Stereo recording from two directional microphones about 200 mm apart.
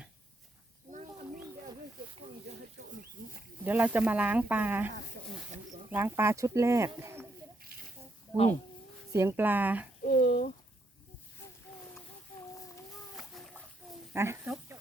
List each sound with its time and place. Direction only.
3.2 s wild animals: 45° right (ahead or behind)
3.7 s speech: 10° right (ahead or behind)
5.9 s speech: 10° right (ahead or behind)
9.1 s speech: 10° right (ahead or behind)
10.0 s speech: 45° left (ahead or behind)
13.1 s splash: centre (ahead or behind)
14.1 s speech: 10° right (ahead or behind)